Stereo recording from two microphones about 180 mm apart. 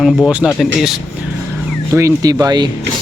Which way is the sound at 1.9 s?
20° right (ahead or behind).